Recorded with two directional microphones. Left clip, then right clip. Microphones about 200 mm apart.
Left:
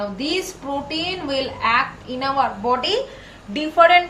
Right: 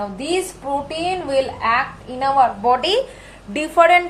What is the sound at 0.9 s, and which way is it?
A woman's voice, 40° right (ahead or behind).